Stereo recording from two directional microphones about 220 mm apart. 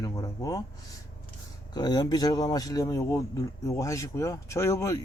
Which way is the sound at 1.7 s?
20° left (ahead or behind).